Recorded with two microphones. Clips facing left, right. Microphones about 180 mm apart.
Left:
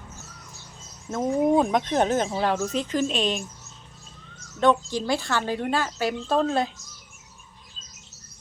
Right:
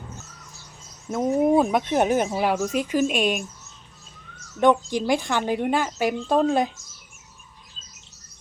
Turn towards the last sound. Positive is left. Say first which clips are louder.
# right 3 dB
turn(degrees=-15)  # may be behind; listen again after turning